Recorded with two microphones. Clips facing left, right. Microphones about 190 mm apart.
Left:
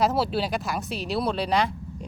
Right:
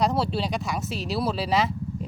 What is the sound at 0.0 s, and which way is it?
Speech, 5° left (ahead or behind).